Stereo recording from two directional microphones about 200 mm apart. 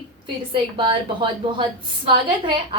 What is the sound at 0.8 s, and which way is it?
A woman's voice, 25° right (ahead or behind).